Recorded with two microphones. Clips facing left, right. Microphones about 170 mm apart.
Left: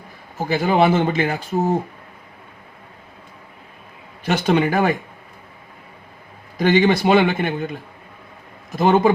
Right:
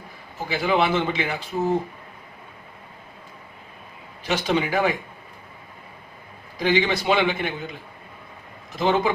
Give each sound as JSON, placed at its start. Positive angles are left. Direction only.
{"t": 0.3, "sound": "speech", "side_deg": 45}
{"t": 4.3, "sound": "speech", "side_deg": 55}
{"t": 6.6, "sound": "speech", "side_deg": 50}
{"t": 8.8, "sound": "speech", "side_deg": 50}